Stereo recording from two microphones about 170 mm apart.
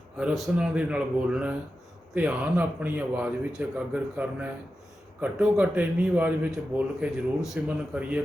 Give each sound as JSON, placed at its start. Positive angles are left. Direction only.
{"t": 0.2, "sound": "a man's voice", "side_deg": -5}